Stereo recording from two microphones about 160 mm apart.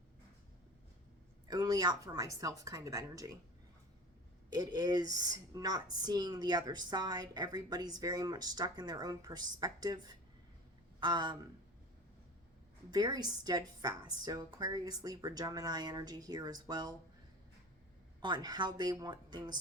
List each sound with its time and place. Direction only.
1.5 s a woman's voice: 25° right (ahead or behind)
4.4 s a woman's voice: 25° right (ahead or behind)
12.9 s a woman's voice: 25° right (ahead or behind)
18.2 s a woman's voice: 25° right (ahead or behind)